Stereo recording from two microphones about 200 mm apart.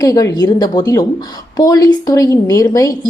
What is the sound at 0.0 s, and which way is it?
A woman's voice, 15° left (ahead or behind).